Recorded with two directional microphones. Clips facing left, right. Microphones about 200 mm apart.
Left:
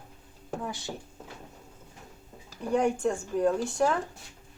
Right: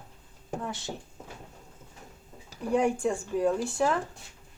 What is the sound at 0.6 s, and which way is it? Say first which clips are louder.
Speech: even; centre (ahead or behind).